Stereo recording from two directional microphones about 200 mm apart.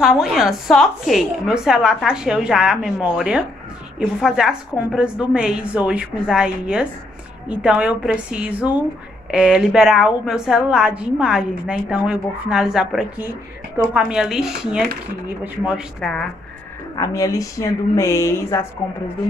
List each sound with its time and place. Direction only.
0.0 s a woman's voice: centre (ahead or behind)
16.9 s a woman's voice: 15° left (ahead or behind)